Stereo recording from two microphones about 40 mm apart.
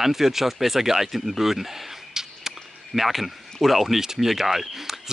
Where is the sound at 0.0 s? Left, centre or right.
Centre.